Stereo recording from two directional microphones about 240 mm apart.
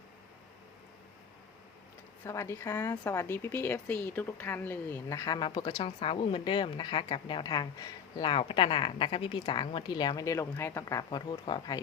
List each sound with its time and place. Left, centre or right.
2.2 s speech: centre